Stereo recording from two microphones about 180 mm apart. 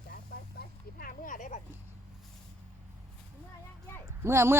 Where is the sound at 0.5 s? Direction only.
50° left (ahead or behind).